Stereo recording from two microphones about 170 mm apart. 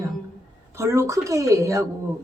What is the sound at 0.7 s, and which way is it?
Speech, 15° right (ahead or behind).